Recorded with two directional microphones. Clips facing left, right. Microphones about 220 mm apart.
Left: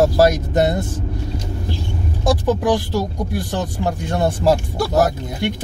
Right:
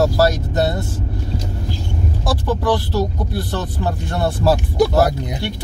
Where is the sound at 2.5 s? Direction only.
15° left (ahead or behind).